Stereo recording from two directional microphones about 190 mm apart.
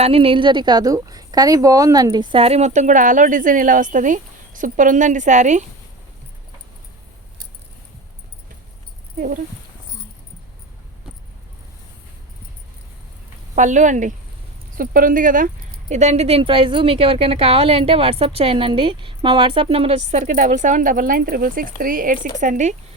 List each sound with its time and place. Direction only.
0.0 s a woman's voice: 30° right (ahead or behind)
13.6 s a woman's voice: 40° right (ahead or behind)